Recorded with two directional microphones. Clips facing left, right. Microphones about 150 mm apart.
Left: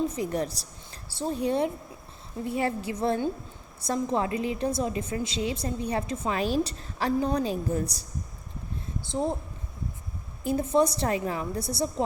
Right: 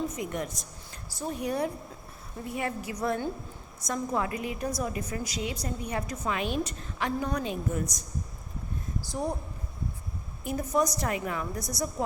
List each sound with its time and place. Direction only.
0.1 s a woman's voice: 35° left (ahead or behind)
9.0 s a woman's voice: 25° left (ahead or behind)
10.4 s a woman's voice: 30° left (ahead or behind)